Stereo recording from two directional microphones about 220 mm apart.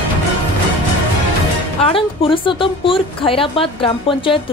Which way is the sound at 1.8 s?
25° left (ahead or behind).